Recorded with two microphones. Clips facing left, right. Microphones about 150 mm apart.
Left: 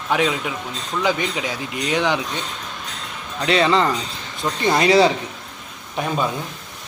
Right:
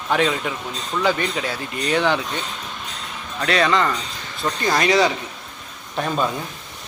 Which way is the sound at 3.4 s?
25° left (ahead or behind).